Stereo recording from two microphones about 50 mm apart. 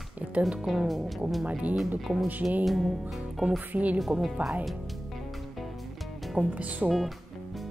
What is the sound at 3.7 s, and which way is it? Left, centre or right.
Speech, right.